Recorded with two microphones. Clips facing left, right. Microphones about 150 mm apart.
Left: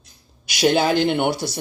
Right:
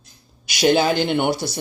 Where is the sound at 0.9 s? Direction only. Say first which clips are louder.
Left 1 dB; centre (ahead or behind).